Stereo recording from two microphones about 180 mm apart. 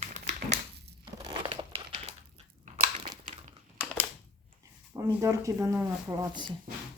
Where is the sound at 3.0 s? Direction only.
25° right (ahead or behind).